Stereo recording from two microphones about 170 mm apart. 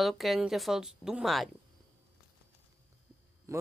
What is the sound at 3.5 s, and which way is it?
Speech, 15° right (ahead or behind).